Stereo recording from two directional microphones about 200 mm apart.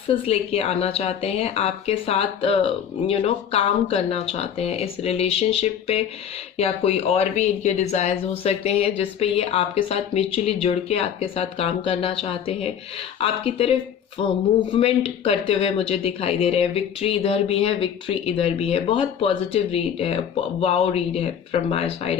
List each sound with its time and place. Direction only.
0.1 s speech: 30° left (ahead or behind)